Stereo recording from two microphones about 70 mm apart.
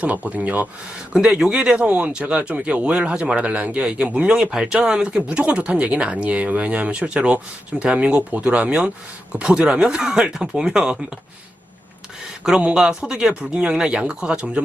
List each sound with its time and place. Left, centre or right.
0.0 s speech: centre
1.1 s speech: centre
12.5 s speech: centre